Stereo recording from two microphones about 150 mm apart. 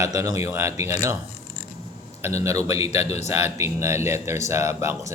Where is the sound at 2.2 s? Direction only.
20° right (ahead or behind).